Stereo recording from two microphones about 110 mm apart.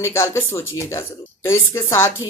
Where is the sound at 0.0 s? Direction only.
25° left (ahead or behind).